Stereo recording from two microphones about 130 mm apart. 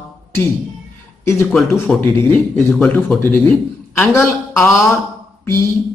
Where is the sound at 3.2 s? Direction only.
15° left (ahead or behind).